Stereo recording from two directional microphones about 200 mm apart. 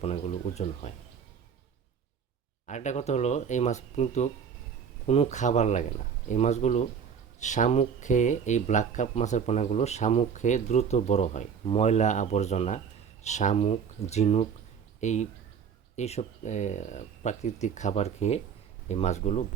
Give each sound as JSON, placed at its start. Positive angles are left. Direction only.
{"t": 0.0, "sound": "speech", "side_deg": 30}
{"t": 2.6, "sound": "speech", "side_deg": 35}